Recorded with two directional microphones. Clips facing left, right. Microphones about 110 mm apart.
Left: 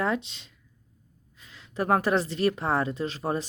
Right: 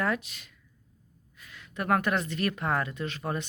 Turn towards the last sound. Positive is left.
turn(degrees=30)  # may be behind; listen again after turning